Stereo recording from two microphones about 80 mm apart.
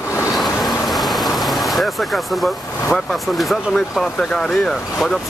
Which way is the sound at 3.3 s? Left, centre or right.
Centre.